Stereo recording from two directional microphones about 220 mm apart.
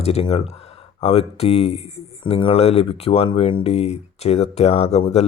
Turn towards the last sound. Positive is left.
turn(degrees=30)  # may be behind; listen again after turning